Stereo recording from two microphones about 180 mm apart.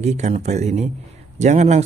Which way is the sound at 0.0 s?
40° right (ahead or behind).